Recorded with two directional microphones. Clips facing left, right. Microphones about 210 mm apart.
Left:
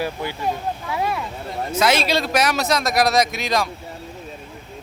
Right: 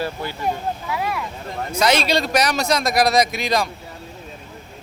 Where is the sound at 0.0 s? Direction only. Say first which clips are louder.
Left 1 dB; 15° left (ahead or behind).